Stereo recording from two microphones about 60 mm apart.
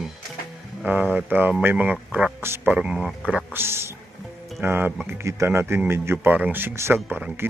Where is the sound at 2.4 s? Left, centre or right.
Right.